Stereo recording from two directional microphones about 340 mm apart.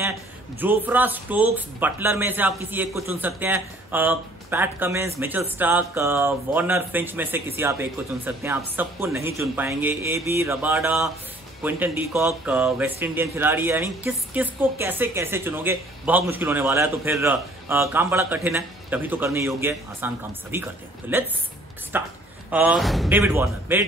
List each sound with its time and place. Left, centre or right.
0.6 s a woman's voice: centre